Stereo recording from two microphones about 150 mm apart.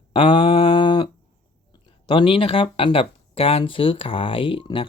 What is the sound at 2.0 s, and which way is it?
Speech, 35° left (ahead or behind).